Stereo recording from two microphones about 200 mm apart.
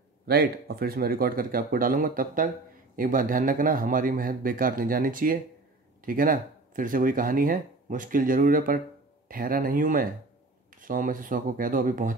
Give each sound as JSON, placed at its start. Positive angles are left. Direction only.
{"t": 0.3, "sound": "speech", "side_deg": -50}